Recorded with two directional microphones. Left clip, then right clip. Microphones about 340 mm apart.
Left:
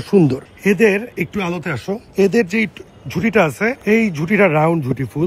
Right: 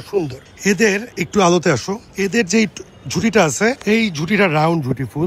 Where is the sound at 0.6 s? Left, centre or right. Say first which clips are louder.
Left 1 dB; centre.